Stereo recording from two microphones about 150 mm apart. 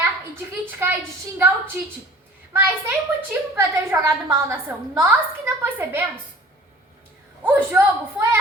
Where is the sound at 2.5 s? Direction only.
15° right (ahead or behind).